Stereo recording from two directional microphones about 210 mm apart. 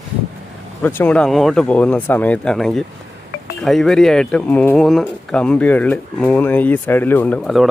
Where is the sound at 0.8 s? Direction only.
10° left (ahead or behind).